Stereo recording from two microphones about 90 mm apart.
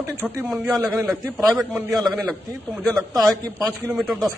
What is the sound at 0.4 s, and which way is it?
Speech, 20° right (ahead or behind).